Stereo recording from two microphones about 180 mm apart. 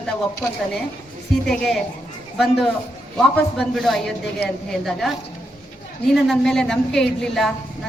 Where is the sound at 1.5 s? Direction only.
Centre (ahead or behind).